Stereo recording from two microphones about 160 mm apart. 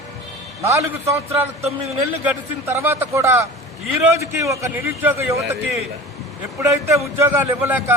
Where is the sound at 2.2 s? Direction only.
15° right (ahead or behind).